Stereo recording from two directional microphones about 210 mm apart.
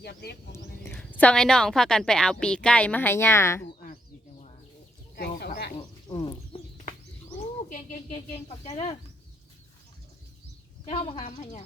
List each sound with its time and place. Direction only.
0.0 s speech: 50° left (ahead or behind)
0.9 s a woman's voice: 5° left (ahead or behind)
5.1 s a sound: 50° left (ahead or behind)
6.1 s bird: 20° left (ahead or behind)
8.1 s speech: 30° left (ahead or behind)
10.8 s speech: 25° left (ahead or behind)